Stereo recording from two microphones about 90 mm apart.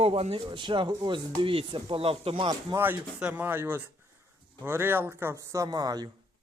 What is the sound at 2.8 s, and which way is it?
Speech, 20° right (ahead or behind).